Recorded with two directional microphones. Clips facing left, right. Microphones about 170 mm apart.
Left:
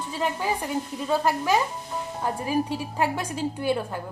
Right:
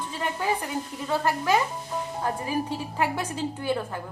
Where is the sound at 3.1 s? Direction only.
15° left (ahead or behind).